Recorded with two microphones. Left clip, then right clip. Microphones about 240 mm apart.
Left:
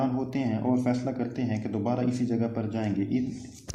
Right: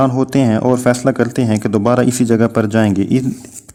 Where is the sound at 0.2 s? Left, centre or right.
Right.